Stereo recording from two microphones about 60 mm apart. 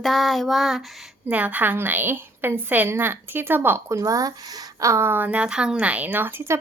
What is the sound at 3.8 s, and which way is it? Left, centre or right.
Speech, right.